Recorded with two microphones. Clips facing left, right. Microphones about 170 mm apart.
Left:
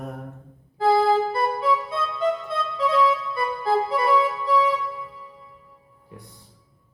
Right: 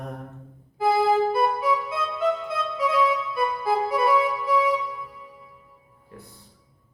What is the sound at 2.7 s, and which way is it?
Music, 10° right (ahead or behind).